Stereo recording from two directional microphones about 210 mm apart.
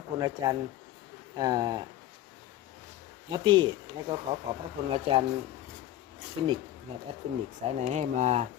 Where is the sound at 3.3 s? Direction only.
20° right (ahead or behind).